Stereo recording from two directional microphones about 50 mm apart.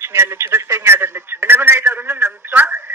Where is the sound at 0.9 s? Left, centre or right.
Right.